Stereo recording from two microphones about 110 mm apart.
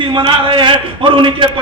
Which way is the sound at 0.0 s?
50° right (ahead or behind).